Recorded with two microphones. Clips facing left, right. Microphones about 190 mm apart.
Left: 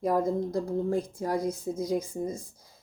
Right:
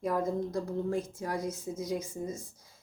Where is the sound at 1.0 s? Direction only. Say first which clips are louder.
Left 5 dB; 35° left (ahead or behind).